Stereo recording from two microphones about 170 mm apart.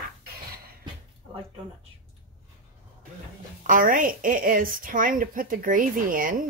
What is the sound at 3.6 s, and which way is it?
A woman's voice, 55° right (ahead or behind).